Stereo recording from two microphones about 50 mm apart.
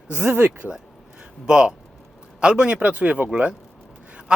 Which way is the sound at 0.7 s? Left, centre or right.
Centre.